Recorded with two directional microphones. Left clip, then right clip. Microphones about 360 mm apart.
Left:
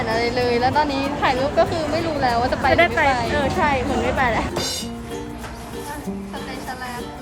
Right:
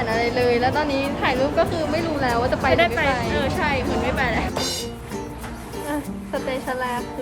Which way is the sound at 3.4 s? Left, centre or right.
Centre.